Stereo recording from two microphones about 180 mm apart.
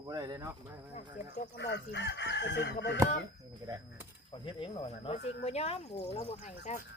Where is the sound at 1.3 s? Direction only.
70° left (ahead or behind).